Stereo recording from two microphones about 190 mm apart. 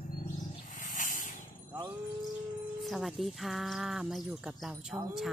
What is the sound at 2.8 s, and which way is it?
Speech, centre (ahead or behind).